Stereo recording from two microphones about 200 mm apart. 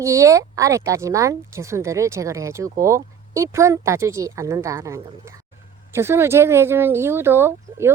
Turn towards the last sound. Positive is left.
turn(degrees=-10)  # may be behind; listen again after turning